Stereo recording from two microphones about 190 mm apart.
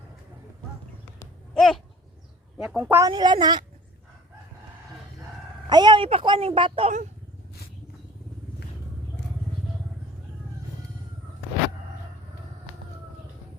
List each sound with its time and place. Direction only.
1.5 s a sound: centre (ahead or behind)
2.6 s speech: 5° right (ahead or behind)
3.1 s speech: 25° right (ahead or behind)
5.6 s speech: 25° right (ahead or behind)